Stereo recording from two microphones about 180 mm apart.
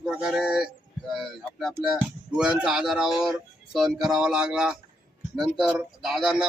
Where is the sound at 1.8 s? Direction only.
5° right (ahead or behind).